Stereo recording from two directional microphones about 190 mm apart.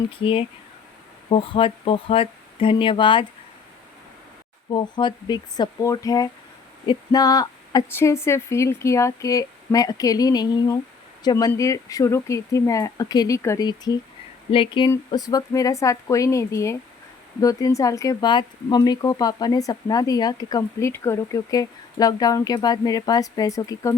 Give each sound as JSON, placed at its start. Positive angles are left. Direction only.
{"t": 0.2, "sound": "speech", "side_deg": 30}
{"t": 4.7, "sound": "speech", "side_deg": 25}